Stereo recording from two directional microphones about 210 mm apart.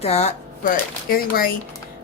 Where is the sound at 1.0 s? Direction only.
45° left (ahead or behind).